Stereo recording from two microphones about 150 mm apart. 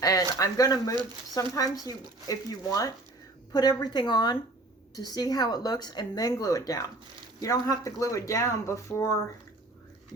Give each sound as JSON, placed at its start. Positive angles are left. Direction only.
{"t": 0.0, "sound": "speech", "side_deg": 25}